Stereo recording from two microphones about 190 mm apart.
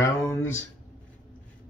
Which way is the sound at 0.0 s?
15° left (ahead or behind).